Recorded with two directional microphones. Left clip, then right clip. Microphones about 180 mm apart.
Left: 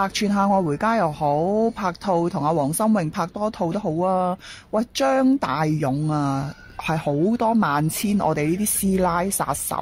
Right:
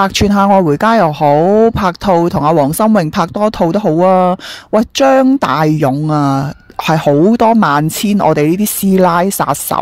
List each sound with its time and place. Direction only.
0.0 s speech: 45° right (ahead or behind)